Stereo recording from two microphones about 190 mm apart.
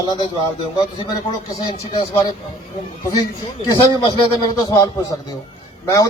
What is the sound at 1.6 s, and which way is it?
Speech, 30° left (ahead or behind).